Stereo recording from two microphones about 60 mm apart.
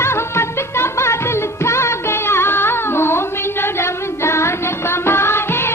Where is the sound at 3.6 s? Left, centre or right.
Left.